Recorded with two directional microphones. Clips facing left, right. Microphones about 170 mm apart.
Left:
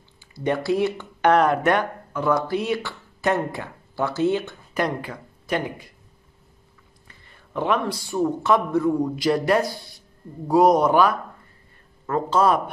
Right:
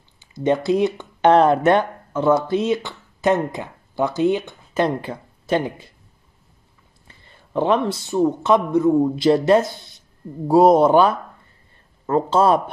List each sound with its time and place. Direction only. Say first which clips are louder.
0.2 s speech: right 5 dB; 20° right (ahead or behind)
7.1 s speech: right 6 dB; 30° right (ahead or behind)